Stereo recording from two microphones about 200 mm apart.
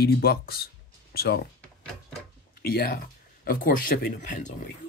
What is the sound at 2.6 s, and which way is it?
Speech, 50° left (ahead or behind).